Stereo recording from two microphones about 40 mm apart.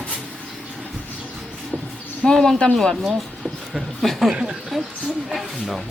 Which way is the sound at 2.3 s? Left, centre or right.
Centre.